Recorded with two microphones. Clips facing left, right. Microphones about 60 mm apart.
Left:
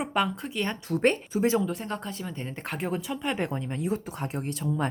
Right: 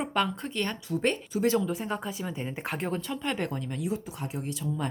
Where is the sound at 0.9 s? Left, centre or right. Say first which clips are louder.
Left 4 dB; left.